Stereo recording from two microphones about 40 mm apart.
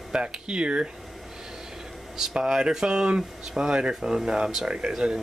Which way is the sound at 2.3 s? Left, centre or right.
Centre.